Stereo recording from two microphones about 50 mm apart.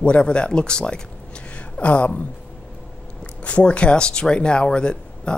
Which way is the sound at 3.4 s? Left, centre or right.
Left.